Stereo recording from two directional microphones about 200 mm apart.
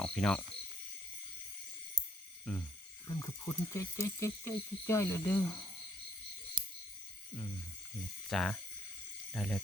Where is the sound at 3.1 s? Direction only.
15° left (ahead or behind).